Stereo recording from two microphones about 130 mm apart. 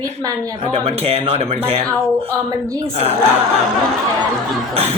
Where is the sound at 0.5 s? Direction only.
50° right (ahead or behind).